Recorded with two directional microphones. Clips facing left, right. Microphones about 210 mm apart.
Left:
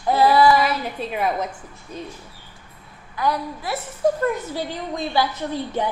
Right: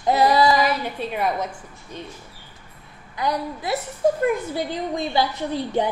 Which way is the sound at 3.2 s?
15° right (ahead or behind).